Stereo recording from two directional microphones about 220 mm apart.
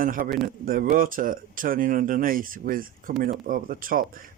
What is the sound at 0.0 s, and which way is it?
Speech, 40° right (ahead or behind).